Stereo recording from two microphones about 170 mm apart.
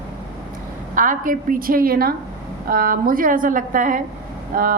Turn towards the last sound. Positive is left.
turn(degrees=-55)  # may be behind; listen again after turning